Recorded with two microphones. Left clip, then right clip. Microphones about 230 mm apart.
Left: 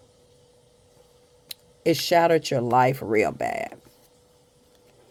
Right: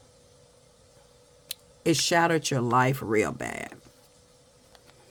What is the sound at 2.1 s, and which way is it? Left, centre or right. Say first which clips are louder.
Speech: left 6 dB; right.